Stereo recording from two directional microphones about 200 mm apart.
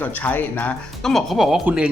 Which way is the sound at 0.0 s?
10° left (ahead or behind).